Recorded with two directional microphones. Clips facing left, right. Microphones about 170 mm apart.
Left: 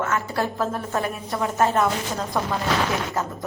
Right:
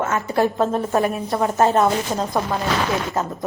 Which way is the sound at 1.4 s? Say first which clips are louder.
Right 4 dB; 35° right (ahead or behind).